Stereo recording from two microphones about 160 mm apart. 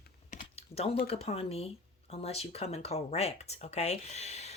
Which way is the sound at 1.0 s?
35° left (ahead or behind).